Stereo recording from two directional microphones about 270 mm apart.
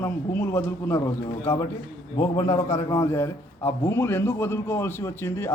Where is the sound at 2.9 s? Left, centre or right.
Centre.